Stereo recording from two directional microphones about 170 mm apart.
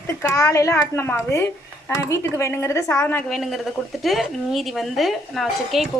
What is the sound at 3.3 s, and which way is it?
A woman's voice, centre (ahead or behind).